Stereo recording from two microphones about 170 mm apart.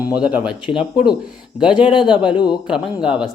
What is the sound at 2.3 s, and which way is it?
Speech, 25° left (ahead or behind).